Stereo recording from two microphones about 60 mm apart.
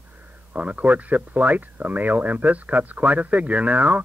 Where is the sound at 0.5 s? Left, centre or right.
Right.